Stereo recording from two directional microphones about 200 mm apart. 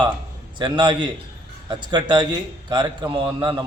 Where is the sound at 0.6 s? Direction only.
20° right (ahead or behind).